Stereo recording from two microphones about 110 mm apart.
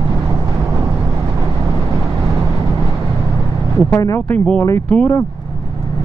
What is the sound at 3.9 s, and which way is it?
Speech, 25° left (ahead or behind).